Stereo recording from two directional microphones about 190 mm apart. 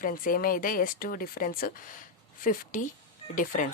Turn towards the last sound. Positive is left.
turn(degrees=45)  # may be behind; listen again after turning